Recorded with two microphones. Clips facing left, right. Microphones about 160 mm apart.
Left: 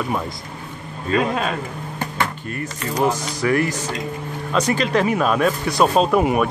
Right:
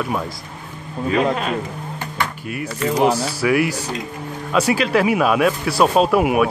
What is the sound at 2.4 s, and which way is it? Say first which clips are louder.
Speech: right 4 dB; 10° right (ahead or behind).